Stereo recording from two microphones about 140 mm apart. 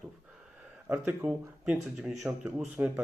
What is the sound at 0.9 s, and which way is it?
Speech, 10° right (ahead or behind).